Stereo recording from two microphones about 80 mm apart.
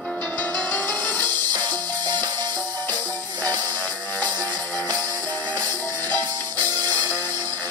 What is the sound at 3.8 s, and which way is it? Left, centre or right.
Music, left.